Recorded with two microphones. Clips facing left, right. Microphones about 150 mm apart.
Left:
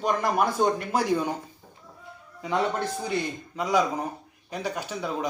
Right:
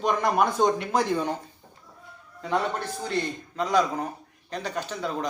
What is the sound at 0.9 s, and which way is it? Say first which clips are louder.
Speech: even; 5° left (ahead or behind).